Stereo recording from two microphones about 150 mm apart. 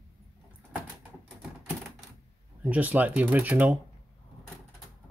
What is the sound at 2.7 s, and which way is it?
Speech, 10° right (ahead or behind).